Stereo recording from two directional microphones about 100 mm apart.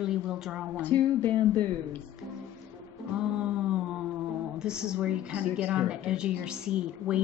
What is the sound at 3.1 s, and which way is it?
A woman's voice, 10° right (ahead or behind).